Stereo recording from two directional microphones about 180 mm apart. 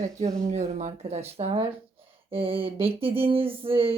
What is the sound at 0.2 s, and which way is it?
A woman's voice, 40° right (ahead or behind).